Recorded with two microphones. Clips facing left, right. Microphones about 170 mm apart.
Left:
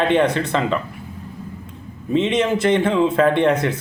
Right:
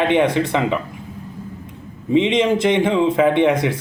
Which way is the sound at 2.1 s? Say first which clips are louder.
Right 2 dB; 15° right (ahead or behind).